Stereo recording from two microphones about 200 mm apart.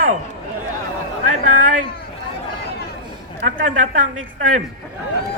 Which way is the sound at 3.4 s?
40° right (ahead or behind).